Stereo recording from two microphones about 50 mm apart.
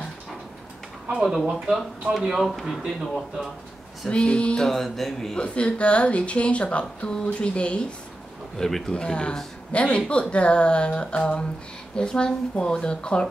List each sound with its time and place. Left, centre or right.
1.2 s speech: centre
4.1 s speech: left
4.6 s music: centre
5.4 s speech: left
8.5 s speech: centre
8.9 s speech: left